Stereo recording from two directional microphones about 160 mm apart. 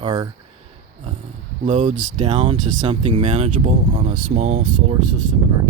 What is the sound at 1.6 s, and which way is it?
Speech, 50° right (ahead or behind).